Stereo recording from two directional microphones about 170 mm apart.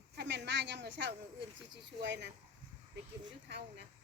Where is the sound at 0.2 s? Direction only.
90° right.